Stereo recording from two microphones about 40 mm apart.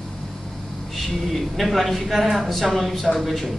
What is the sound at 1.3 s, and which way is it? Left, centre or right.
A man's voice, centre.